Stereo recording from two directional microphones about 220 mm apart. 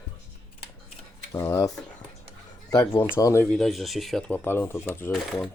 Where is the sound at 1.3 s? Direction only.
15° left (ahead or behind).